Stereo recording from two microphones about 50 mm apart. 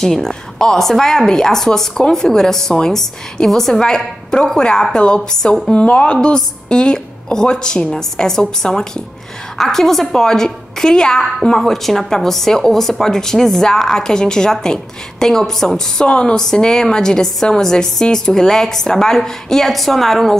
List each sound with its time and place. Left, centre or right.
0.0 s a woman's voice: centre